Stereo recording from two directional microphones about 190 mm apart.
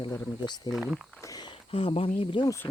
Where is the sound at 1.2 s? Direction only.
20° left (ahead or behind).